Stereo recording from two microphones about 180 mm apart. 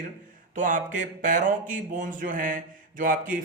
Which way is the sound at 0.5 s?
45° right (ahead or behind).